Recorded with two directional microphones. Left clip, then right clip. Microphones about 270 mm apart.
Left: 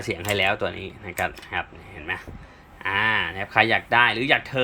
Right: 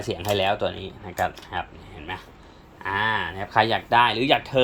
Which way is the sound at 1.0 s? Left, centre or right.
Left.